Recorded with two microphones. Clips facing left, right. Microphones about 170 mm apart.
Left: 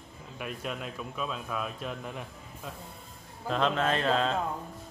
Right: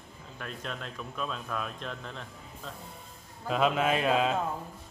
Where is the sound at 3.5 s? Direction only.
10° right (ahead or behind).